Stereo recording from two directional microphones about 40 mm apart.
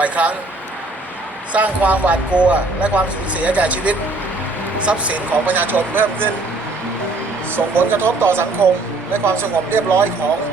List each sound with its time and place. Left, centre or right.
0.0 s speech: right
1.5 s speech: right
5.5 s speech: right
7.5 s speech: right
9.1 s speech: right